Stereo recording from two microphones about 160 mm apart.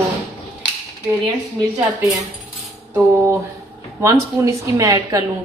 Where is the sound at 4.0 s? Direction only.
20° right (ahead or behind).